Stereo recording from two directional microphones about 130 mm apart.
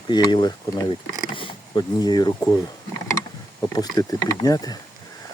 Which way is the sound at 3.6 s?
30° left (ahead or behind).